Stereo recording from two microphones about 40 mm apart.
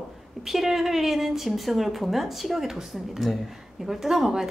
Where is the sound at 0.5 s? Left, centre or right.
Centre.